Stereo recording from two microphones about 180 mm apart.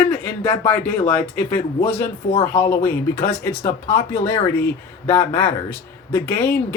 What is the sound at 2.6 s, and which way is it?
Speech, 10° left (ahead or behind).